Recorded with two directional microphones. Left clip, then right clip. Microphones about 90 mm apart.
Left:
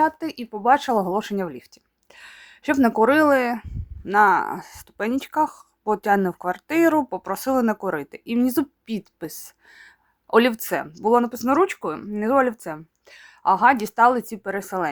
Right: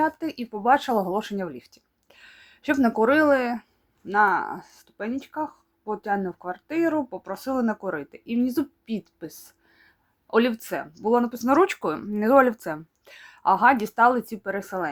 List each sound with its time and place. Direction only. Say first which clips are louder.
0.0 s speech: left 4 dB; 20° left (ahead or behind); by 5.1 s 55° left (ahead or behind)
5.1 s speech: left 11 dB; 65° left (ahead or behind); by 11.1 s 50° left (ahead or behind)
11.1 s speech: left 3 dB; 30° left (ahead or behind)
11.4 s speech: even; 10° left (ahead or behind); by 14.8 s 25° left (ahead or behind)